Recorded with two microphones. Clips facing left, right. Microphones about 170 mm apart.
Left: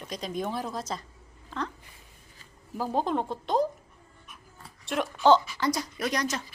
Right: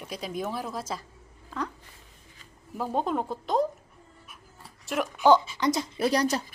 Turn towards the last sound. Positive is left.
turn(degrees=-35)  # may be behind; listen again after turning